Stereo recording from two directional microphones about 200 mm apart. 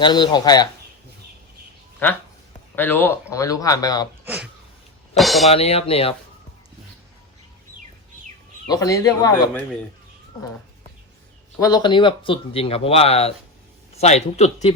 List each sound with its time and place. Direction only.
0.0 s speech: 20° left (ahead or behind)
2.7 s speech: 10° left (ahead or behind)
5.1 s speech: centre (ahead or behind)
5.5 s speech: 30° left (ahead or behind)
8.6 s speech: 20° left (ahead or behind)
11.6 s a man's voice: 20° left (ahead or behind)